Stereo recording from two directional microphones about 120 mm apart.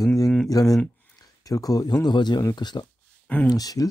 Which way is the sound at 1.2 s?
30° left (ahead or behind).